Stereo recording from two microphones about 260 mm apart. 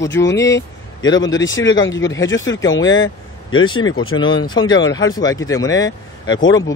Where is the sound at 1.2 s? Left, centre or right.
Left.